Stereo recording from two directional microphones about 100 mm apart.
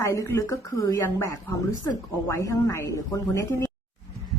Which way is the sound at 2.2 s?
30° left (ahead or behind).